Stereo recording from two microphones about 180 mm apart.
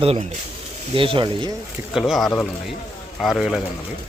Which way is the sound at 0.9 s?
30° right (ahead or behind).